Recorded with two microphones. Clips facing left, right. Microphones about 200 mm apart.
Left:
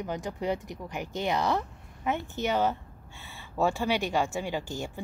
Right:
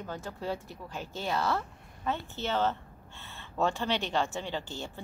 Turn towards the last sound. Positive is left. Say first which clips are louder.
# left 4 dB
turn(degrees=15)  # may be behind; listen again after turning